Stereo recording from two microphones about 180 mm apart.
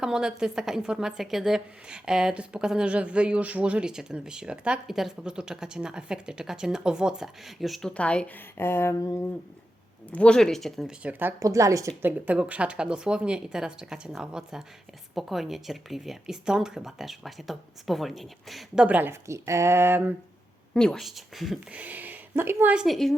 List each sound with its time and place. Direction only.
0.0 s a woman's voice: 5° right (ahead or behind); by 9.3 s 15° left (ahead or behind)
10.1 s a woman's voice: 5° left (ahead or behind); by 20.1 s 10° right (ahead or behind)
20.7 s a woman's voice: 5° left (ahead or behind)